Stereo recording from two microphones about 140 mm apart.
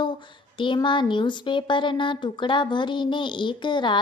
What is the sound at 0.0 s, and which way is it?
A woman's voice, 35° left (ahead or behind).